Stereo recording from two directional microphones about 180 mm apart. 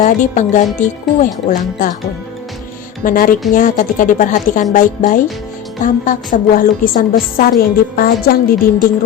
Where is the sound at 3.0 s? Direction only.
50° left (ahead or behind).